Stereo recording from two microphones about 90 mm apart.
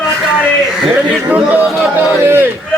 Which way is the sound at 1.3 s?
15° right (ahead or behind).